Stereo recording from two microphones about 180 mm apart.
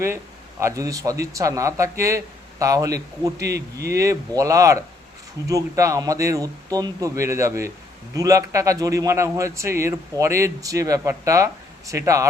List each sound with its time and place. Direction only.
0.6 s a man's voice: 20° right (ahead or behind)
3.4 s speech: 65° right (ahead or behind)
3.8 s a man's voice: 15° right (ahead or behind)